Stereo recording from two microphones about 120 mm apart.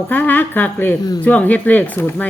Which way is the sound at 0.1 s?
15° left (ahead or behind).